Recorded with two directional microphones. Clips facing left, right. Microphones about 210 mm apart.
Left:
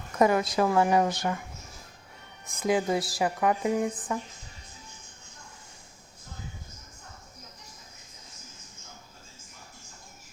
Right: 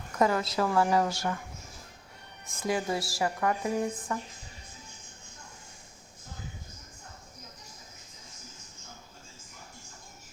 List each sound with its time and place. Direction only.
0.2 s a woman's voice: 15° left (ahead or behind)
2.5 s a woman's voice: 20° left (ahead or behind)